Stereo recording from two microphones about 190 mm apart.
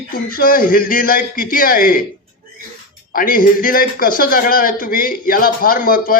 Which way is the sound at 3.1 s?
45° left (ahead or behind).